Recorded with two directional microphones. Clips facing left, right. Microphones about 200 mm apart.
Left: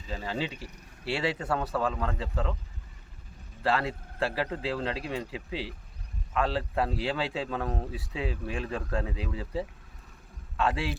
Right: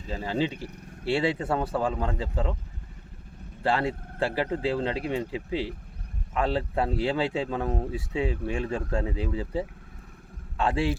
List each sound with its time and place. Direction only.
0.1 s speech: 25° right (ahead or behind)
3.6 s speech: 30° right (ahead or behind)